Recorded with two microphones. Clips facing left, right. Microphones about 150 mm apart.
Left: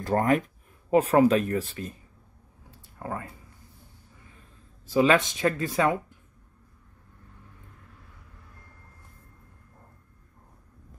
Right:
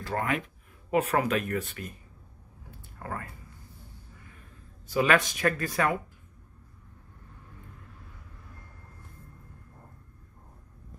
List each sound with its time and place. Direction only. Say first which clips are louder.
0.0 s speech: left 7 dB; 40° left (ahead or behind)
3.0 s speech: left 3 dB; 15° left (ahead or behind)
4.8 s speech: left 3 dB; 25° left (ahead or behind)